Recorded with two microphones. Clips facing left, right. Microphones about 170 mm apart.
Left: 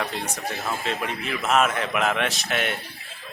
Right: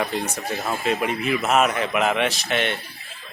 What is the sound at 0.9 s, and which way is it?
Speech, 10° right (ahead or behind).